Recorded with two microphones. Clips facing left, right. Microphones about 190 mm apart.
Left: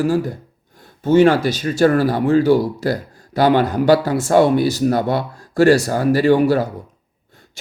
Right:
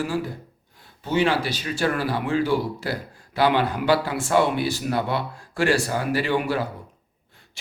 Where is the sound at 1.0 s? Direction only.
45° left (ahead or behind).